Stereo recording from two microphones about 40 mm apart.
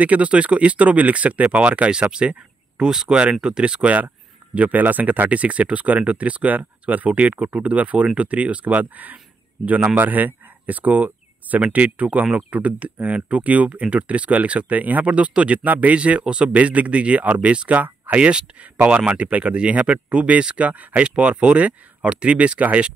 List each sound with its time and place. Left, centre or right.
0.0 s speech: right
2.8 s speech: centre; by 5.4 s right
5.4 s speech: right
14.8 s speech: right
15.1 s speech: right
15.6 s speech: right
16.0 s speech: right
17.7 s a sound: right
18.1 s speech: right
21.0 s speech: right